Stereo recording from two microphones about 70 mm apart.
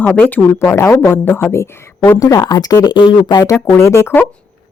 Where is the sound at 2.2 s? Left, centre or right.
Left.